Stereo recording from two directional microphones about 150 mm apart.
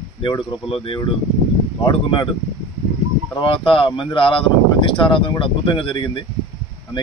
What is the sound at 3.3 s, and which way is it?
A man's voice, 35° left (ahead or behind).